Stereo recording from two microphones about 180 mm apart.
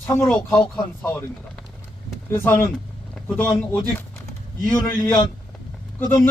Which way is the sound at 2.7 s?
5° left (ahead or behind).